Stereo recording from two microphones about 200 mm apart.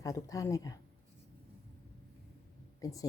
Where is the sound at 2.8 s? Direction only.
15° left (ahead or behind).